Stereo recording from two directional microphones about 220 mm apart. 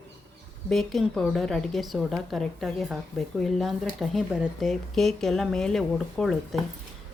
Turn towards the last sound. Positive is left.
turn(degrees=0)  # may be behind; listen again after turning